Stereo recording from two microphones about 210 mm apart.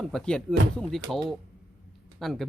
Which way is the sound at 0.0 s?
Centre (ahead or behind).